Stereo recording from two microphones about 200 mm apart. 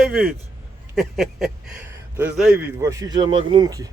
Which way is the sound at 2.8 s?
15° right (ahead or behind).